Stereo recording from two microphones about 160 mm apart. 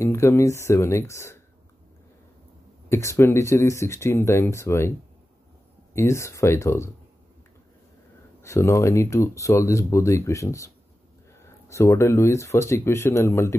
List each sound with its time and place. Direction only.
0.0 s speech: 15° left (ahead or behind)
2.9 s speech: 15° left (ahead or behind)
5.9 s speech: 15° left (ahead or behind)
8.4 s speech: 15° left (ahead or behind)
11.7 s speech: 20° left (ahead or behind)